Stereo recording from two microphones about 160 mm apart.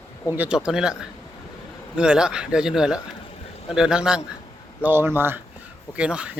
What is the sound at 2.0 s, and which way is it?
Speech, 5° right (ahead or behind).